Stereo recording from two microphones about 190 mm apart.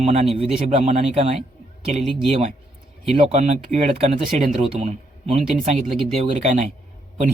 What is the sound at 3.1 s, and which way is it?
Speech, 35° right (ahead or behind).